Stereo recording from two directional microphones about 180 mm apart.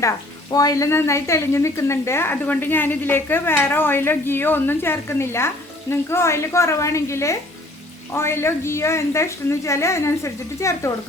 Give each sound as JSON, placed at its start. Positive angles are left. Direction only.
{"t": 0.5, "sound": "speech", "side_deg": 20}